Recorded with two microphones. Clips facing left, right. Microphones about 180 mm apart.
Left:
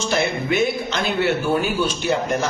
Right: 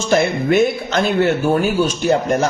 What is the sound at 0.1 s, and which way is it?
A man's voice, 50° right (ahead or behind).